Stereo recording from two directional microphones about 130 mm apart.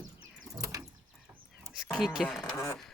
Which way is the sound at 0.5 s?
25° right (ahead or behind).